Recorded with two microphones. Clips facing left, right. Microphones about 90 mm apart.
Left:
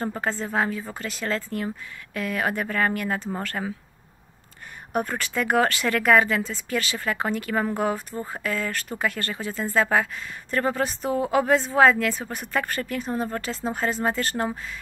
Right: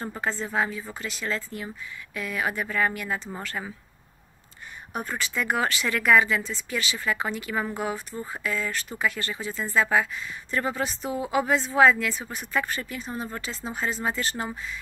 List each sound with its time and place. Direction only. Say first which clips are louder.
0.0 s speech: left 3 dB; 45° left (ahead or behind)
4.9 s speech: left 4 dB; 55° left (ahead or behind)